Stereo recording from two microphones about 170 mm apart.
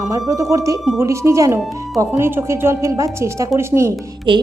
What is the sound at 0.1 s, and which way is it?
A woman's voice, 20° right (ahead or behind).